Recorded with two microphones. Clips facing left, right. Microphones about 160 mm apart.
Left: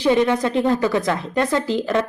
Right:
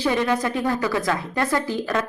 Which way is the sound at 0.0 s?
20° left (ahead or behind).